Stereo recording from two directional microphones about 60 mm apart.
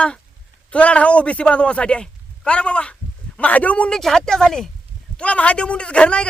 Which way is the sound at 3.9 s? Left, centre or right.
Centre.